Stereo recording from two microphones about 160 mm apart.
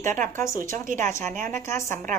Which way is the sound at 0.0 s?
50° right (ahead or behind).